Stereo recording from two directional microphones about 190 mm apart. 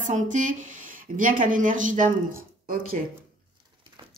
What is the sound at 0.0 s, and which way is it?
Speech, 40° right (ahead or behind).